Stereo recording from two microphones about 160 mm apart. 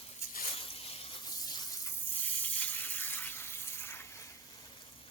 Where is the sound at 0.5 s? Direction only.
35° left (ahead or behind).